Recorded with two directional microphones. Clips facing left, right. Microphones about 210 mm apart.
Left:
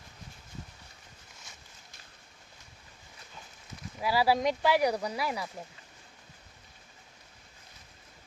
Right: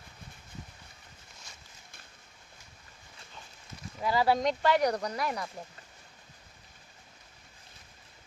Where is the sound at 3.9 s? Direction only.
5° left (ahead or behind).